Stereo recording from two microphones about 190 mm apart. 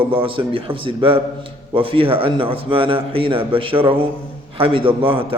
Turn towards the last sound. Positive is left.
turn(degrees=-30)  # may be behind; listen again after turning